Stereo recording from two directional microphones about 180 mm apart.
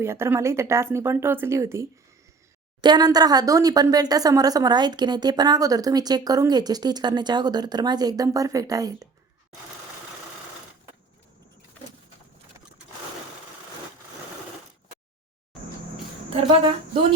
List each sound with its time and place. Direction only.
0.0 s speech: 15° right (ahead or behind)